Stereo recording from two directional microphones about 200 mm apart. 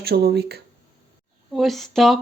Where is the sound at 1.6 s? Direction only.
Centre (ahead or behind).